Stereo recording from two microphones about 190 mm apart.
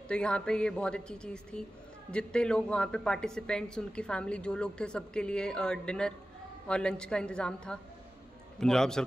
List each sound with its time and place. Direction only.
0.1 s a woman's voice: 5° left (ahead or behind)